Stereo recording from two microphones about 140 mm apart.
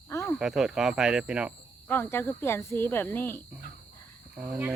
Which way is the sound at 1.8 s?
15° left (ahead or behind).